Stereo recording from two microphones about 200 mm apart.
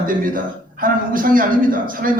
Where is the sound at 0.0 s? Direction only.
45° right (ahead or behind).